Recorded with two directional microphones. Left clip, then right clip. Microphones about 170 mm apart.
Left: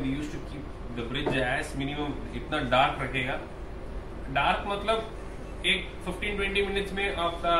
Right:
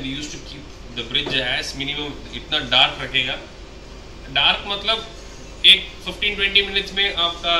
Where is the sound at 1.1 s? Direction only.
15° left (ahead or behind).